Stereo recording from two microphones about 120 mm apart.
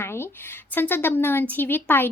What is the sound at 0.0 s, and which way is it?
A woman's voice, 20° left (ahead or behind).